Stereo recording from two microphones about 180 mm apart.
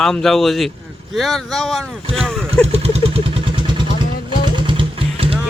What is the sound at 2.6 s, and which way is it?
Vehicle, 35° right (ahead or behind).